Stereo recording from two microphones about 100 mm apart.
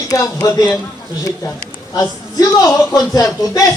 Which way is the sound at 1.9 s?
40° left (ahead or behind).